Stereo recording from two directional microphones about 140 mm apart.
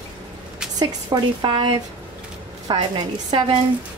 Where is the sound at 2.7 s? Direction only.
30° right (ahead or behind).